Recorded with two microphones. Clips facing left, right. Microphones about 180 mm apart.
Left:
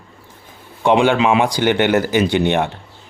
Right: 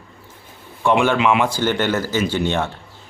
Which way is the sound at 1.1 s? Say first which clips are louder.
Left 2 dB; 30° left (ahead or behind).